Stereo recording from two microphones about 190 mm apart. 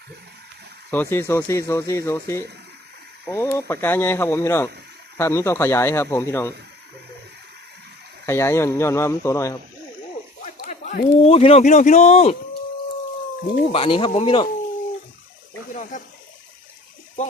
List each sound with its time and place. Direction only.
0.9 s speech: 10° left (ahead or behind)
8.3 s speech: 15° left (ahead or behind)
10.4 s speech: 40° left (ahead or behind)
13.7 s speech: 30° left (ahead or behind)
15.7 s a sound: 40° left (ahead or behind)